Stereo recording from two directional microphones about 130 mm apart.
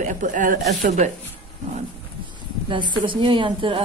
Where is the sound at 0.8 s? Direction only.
65° right (ahead or behind).